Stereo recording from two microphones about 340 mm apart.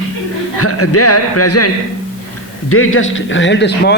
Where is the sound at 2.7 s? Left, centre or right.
Left.